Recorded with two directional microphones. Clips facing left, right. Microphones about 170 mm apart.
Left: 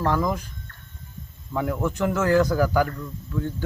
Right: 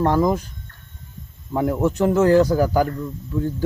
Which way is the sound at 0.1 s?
35° right (ahead or behind).